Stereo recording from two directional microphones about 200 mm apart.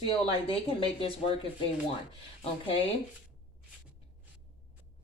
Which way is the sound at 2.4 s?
30° left (ahead or behind).